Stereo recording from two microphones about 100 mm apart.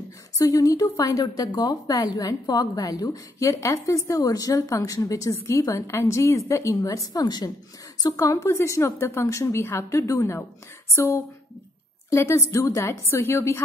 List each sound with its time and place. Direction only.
0.4 s a woman's voice: 35° left (ahead or behind)